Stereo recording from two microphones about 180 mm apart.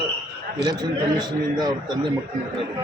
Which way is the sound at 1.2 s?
25° right (ahead or behind).